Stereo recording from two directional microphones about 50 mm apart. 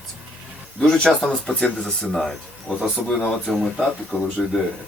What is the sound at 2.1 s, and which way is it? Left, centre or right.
Speech, centre.